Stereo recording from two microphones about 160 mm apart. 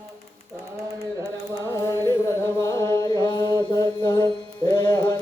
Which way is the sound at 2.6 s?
20° left (ahead or behind).